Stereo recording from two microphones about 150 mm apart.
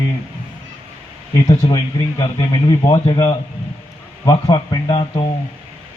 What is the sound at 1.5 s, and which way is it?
Speech, 25° left (ahead or behind).